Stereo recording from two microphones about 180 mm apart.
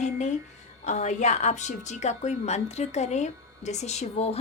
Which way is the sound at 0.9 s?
40° left (ahead or behind).